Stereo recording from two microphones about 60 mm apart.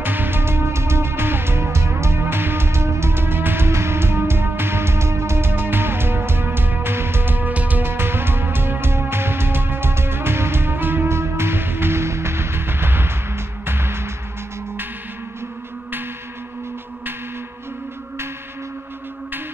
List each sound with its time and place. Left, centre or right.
0.0 s music: right
7.9 s music: right